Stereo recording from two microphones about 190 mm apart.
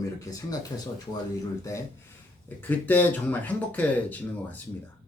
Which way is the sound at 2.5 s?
10° left (ahead or behind).